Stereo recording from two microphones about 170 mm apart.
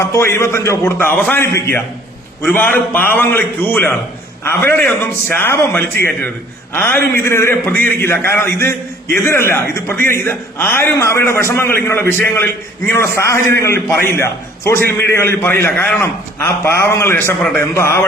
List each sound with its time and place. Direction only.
0.0 s a man's voice: 15° left (ahead or behind)